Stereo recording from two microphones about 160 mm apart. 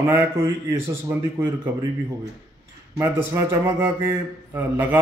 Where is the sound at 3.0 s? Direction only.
15° right (ahead or behind).